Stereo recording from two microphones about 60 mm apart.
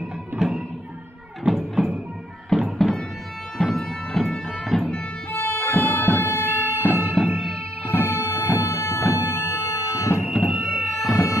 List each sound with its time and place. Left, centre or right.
0.4 s music: centre
1.4 s music: centre
5.3 s music: left
7.2 s music: centre
8.1 s music: left
10.2 s music: centre
11.1 s siren: centre